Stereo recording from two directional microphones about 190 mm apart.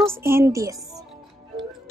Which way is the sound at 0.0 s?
15° right (ahead or behind).